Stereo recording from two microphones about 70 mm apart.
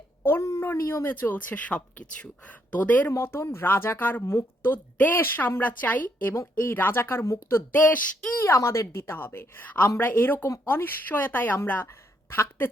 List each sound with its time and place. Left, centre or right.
0.2 s a woman's voice: left
1.0 s a woman's voice: left
3.1 s a woman's voice: left
8.4 s a woman's voice: left